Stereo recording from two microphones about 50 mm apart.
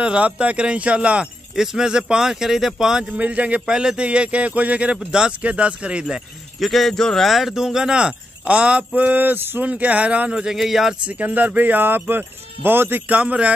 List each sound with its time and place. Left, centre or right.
0.0 s speech: right
1.5 s speech: centre
3.2 s speech: right
6.6 s speech: centre
7.2 s speech: centre; by 9.1 s right
9.1 s speech: right
9.6 s speech: right
10.3 s speech: centre
11.1 s speech: right
13.2 s speech: right